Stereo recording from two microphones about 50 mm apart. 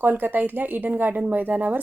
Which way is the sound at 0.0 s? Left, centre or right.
Right.